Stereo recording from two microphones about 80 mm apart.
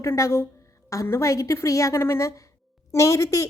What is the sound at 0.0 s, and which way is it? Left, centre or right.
A woman's voice, left.